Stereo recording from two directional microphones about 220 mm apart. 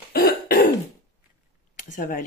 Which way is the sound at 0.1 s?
40° left (ahead or behind).